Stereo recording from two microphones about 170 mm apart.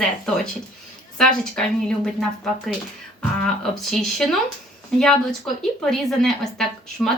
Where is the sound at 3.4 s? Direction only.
5° left (ahead or behind).